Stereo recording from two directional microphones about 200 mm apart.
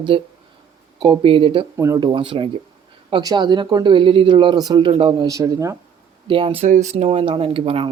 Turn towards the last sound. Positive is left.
turn(degrees=-30)  # may be behind; listen again after turning